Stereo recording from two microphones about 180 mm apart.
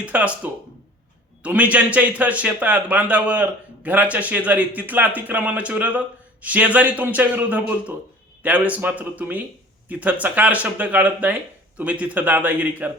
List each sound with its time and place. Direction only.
0.0 s a man's voice: 10° right (ahead or behind)